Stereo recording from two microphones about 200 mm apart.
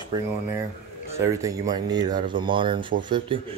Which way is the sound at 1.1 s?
15° right (ahead or behind).